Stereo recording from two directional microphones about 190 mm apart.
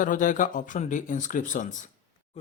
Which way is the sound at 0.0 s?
45° left (ahead or behind).